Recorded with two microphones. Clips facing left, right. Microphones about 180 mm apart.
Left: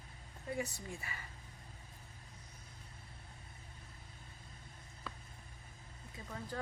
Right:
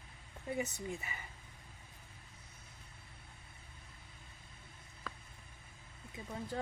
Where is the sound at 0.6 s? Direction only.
20° right (ahead or behind).